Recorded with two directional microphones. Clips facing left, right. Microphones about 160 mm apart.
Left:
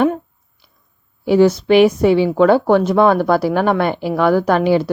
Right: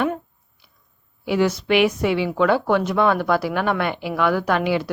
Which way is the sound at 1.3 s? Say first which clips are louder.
Left 7 dB; 35° left (ahead or behind).